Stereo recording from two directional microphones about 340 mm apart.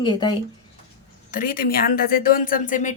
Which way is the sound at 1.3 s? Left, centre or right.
Left.